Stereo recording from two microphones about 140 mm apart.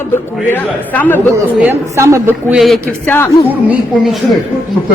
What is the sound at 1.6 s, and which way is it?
Speech, 20° right (ahead or behind).